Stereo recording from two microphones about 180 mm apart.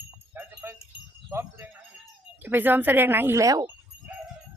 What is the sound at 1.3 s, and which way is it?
Speech, 10° right (ahead or behind).